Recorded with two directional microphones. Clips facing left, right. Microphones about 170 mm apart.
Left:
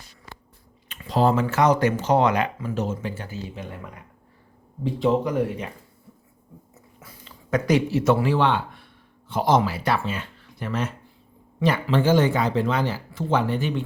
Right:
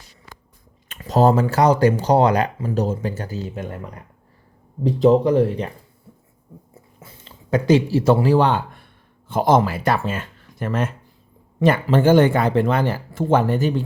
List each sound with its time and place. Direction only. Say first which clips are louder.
0.9 s speech: right 5 dB; 45° right (ahead or behind)
4.8 s speech: right 7 dB; 40° right (ahead or behind)
6.7 s a sound: right 2 dB; 25° right (ahead or behind); by 8.9 s 45° right (ahead or behind)
9.3 s speech: right 4 dB; 50° right (ahead or behind)